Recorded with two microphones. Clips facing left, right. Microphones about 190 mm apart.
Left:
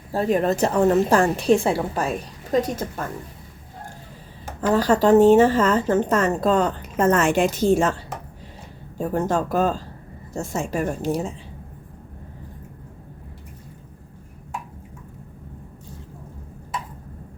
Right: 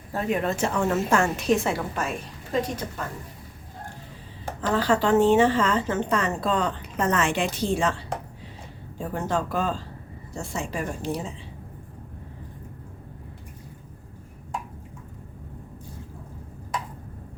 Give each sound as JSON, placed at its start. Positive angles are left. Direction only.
{"t": 0.1, "sound": "a woman's voice", "side_deg": 35}
{"t": 4.7, "sound": "a woman's voice", "side_deg": 40}